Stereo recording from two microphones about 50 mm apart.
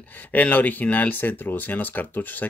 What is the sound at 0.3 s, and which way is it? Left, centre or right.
Speech, left.